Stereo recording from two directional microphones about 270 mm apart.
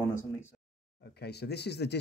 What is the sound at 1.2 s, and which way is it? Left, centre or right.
Speech, left.